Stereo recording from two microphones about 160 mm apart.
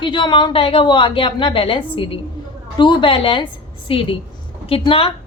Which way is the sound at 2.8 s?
30° left (ahead or behind).